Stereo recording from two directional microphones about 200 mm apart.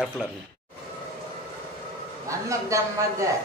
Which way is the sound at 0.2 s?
5° right (ahead or behind).